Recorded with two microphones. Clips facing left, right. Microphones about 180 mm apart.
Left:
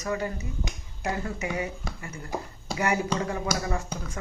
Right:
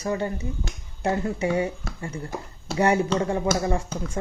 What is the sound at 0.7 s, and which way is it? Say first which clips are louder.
Speech: right 1 dB; 20° left (ahead or behind).